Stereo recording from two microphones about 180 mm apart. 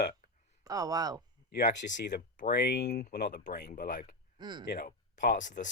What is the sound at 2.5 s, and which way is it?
Speech, 60° left (ahead or behind).